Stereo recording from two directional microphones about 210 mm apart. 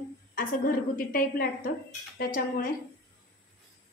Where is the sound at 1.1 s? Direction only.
40° left (ahead or behind).